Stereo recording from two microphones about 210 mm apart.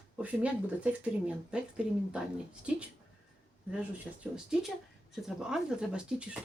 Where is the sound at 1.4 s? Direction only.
5° right (ahead or behind).